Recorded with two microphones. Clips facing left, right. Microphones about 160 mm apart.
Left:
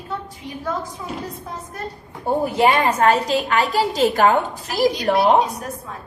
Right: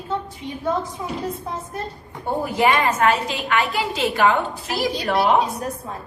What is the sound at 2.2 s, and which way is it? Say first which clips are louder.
A woman's voice: left 3 dB; 30° left (ahead or behind).